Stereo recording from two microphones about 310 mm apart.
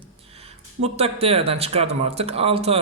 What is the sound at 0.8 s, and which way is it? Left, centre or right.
Speech, centre.